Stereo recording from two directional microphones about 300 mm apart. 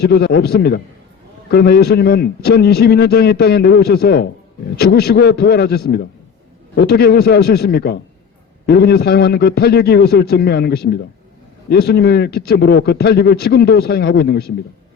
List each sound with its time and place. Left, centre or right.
0.0 s a man's voice: left